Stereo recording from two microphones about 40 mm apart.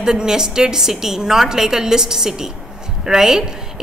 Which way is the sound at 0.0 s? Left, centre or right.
Centre.